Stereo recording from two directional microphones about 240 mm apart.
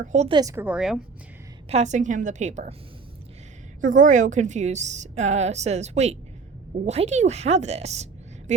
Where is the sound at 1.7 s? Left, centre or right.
Right.